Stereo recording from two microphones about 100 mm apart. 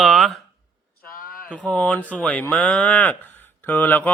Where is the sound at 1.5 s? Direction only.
10° left (ahead or behind).